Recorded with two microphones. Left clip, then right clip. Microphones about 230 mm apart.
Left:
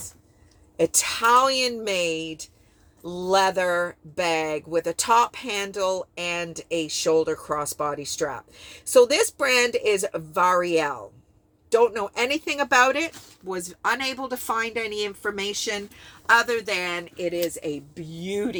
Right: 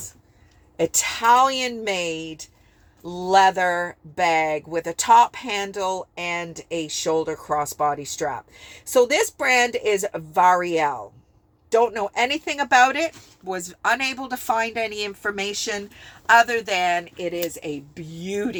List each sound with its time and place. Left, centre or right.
0.8 s speech: centre
11.9 s speech: centre
17.2 s speech: left
17.9 s speech: centre